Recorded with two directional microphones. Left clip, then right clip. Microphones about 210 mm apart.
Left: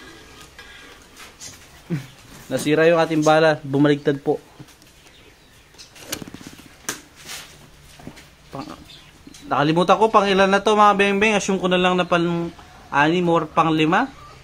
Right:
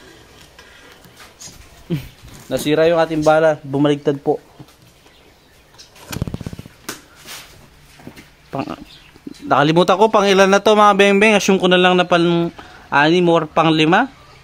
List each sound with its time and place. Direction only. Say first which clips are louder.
2.5 s speech: right 2 dB; 20° right (ahead or behind); by 4.4 s centre (ahead or behind)
8.5 s a sound: right 9 dB; 45° right (ahead or behind)
9.5 s speech: right 4 dB; 45° right (ahead or behind)